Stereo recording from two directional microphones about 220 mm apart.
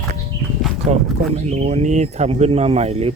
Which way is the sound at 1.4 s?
30° right (ahead or behind).